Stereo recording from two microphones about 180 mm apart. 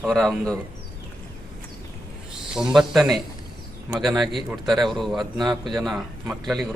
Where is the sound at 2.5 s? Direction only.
5° right (ahead or behind).